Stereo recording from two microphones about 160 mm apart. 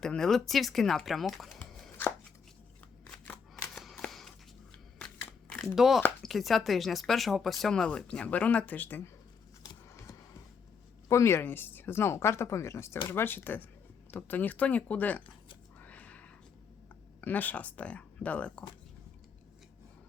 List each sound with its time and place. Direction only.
0.0 s speech: 5° left (ahead or behind)
1.5 s chopping: 15° left (ahead or behind)
3.8 s a sound: centre (ahead or behind)
5.5 s crumpling: centre (ahead or behind)
6.2 s speech: centre (ahead or behind)
9.9 s a sound: 20° left (ahead or behind)
11.1 s speech: 15° left (ahead or behind)
15.8 s a sound: 10° left (ahead or behind)
17.2 s speech: 10° left (ahead or behind)